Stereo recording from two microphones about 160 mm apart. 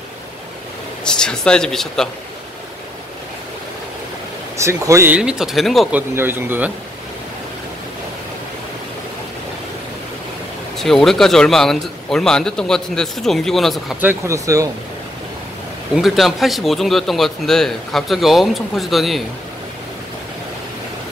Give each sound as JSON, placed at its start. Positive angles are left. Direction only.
{"t": 1.0, "sound": "speech", "side_deg": 5}
{"t": 4.6, "sound": "speech", "side_deg": -20}
{"t": 5.9, "sound": "speech", "side_deg": -15}
{"t": 10.8, "sound": "speech", "side_deg": 0}
{"t": 14.0, "sound": "speech", "side_deg": -20}
{"t": 15.9, "sound": "speech", "side_deg": 0}